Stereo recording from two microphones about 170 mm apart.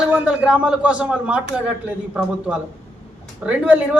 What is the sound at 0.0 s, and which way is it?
A man's voice, 5° right (ahead or behind).